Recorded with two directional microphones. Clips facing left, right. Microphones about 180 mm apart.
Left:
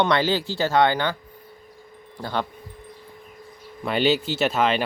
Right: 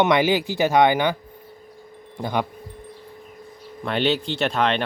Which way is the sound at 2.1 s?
20° right (ahead or behind).